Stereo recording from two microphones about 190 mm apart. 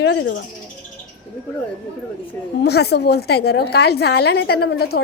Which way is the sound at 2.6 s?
60° left (ahead or behind).